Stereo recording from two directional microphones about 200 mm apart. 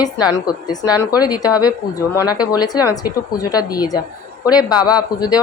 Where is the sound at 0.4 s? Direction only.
20° left (ahead or behind).